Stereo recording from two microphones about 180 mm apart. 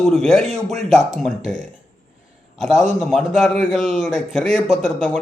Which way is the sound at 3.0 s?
Centre (ahead or behind).